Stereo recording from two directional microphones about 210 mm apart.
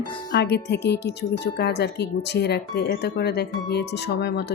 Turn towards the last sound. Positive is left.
turn(degrees=50)  # may be behind; listen again after turning